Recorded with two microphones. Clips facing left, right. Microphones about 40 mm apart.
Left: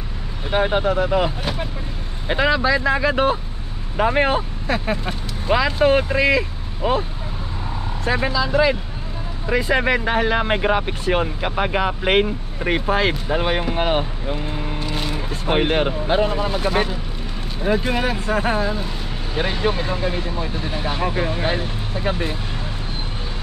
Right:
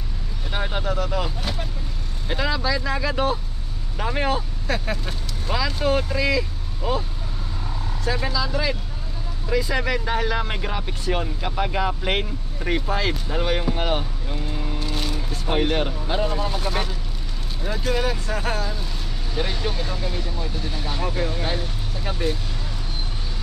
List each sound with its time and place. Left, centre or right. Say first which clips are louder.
0.5 s speech: left 8 dB; left